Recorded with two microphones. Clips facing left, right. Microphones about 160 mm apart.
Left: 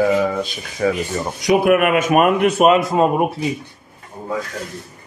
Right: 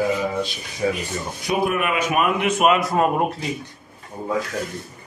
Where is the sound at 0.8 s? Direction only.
70° left (ahead or behind); by 2.5 s 45° left (ahead or behind).